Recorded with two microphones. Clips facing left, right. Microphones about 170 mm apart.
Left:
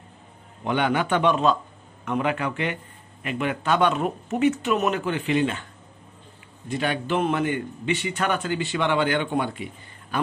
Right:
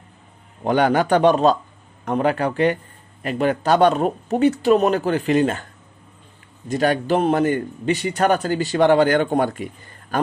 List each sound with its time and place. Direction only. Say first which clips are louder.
0.7 s a man's voice: right 6 dB; 40° right (ahead or behind)
6.7 s a man's voice: right 6 dB; 40° right (ahead or behind)